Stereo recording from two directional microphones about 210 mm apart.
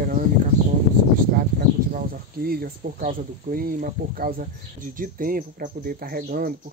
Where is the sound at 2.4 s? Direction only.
45° right (ahead or behind).